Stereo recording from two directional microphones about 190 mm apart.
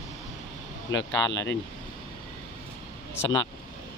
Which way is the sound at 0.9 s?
80° left.